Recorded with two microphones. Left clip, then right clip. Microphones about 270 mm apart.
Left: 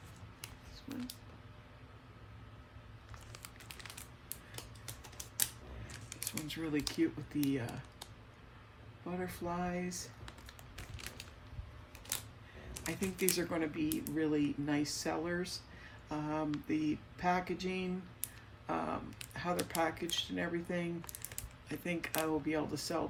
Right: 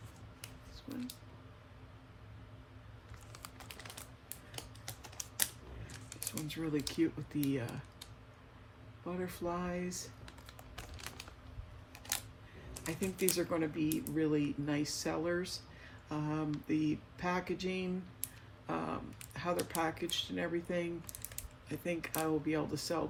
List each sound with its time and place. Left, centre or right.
4.5 s typing: right
5.9 s a sound: centre
6.6 s speech: centre
9.1 s speech: centre
12.1 s camera: right
12.7 s speech: centre